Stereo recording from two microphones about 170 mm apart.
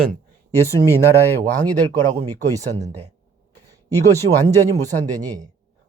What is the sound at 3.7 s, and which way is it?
A man's voice, 20° right (ahead or behind).